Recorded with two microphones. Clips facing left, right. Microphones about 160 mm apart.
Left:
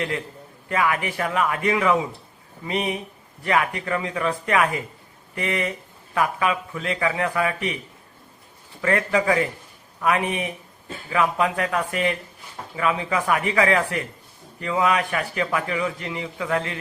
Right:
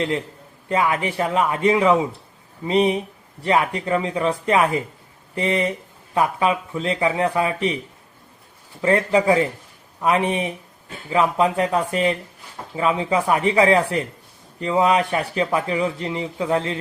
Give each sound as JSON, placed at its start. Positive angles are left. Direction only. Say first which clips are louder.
{"t": 0.7, "sound": "a man's voice", "louder": "right 3 dB", "side_deg": -25}
{"t": 8.8, "sound": "a man's voice", "louder": "right 4 dB", "side_deg": -25}